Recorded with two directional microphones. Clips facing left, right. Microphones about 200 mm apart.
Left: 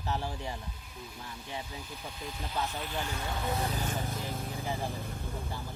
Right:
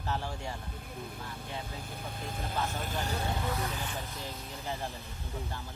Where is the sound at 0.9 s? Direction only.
55° right (ahead or behind).